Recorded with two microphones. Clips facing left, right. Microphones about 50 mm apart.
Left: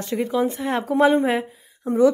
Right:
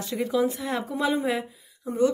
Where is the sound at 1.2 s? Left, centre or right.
Left.